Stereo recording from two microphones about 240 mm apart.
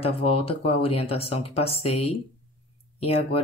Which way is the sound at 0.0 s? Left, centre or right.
Left.